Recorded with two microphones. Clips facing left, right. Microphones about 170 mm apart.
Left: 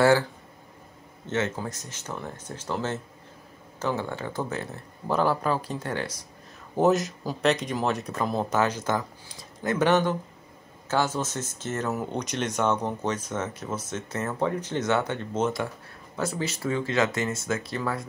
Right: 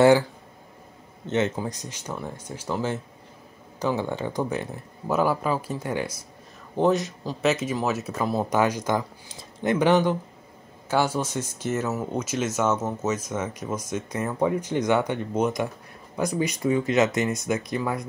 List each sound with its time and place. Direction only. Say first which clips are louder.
1.2 s speech: right 3 dB; 20° right (ahead or behind)
6.8 s speech: even; centre (ahead or behind)
9.4 s a sound: right 4 dB; 20° right (ahead or behind)
9.8 s speech: right 2 dB; 10° right (ahead or behind)